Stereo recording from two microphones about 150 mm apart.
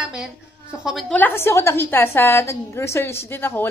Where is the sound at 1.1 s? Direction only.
15° left (ahead or behind).